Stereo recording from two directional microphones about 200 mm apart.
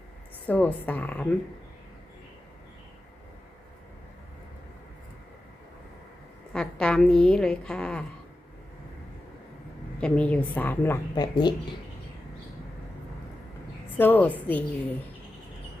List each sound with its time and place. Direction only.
0.4 s a woman's voice: 10° left (ahead or behind)
6.5 s a woman's voice: 5° left (ahead or behind)
10.0 s a woman's voice: 5° left (ahead or behind)
11.1 s speech: 20° left (ahead or behind)
13.9 s a woman's voice: 10° left (ahead or behind)